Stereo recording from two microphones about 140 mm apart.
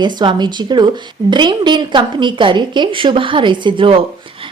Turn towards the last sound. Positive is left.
turn(degrees=-40)  # may be behind; listen again after turning